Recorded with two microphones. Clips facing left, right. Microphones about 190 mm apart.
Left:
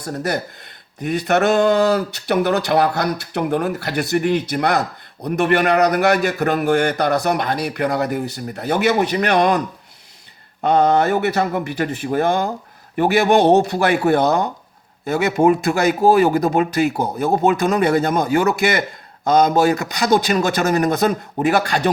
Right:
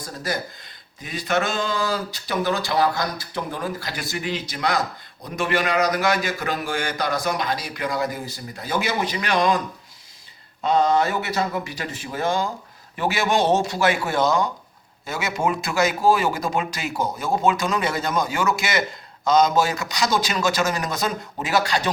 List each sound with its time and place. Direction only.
0.0 s speech: 65° left (ahead or behind)
10.6 s speech: 60° left (ahead or behind)